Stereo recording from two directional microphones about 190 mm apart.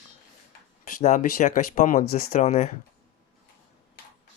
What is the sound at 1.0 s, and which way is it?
Speech, 40° left (ahead or behind).